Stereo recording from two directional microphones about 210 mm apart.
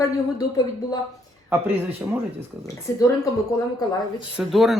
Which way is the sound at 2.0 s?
10° right (ahead or behind).